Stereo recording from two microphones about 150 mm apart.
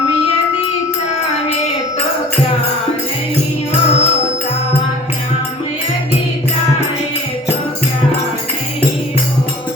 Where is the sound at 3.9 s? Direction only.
45° left (ahead or behind).